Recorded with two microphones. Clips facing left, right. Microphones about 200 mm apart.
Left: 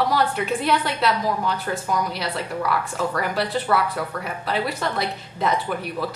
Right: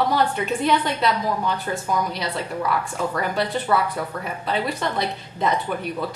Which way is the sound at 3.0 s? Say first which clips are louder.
Even; 5° left (ahead or behind).